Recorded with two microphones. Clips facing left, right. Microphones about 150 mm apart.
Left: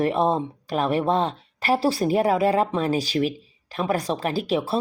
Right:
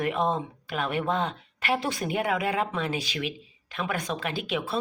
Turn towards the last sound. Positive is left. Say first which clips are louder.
# left 6 dB
turn(degrees=35)  # may be behind; listen again after turning